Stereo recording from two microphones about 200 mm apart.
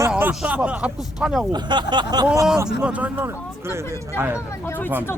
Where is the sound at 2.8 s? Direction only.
5° right (ahead or behind).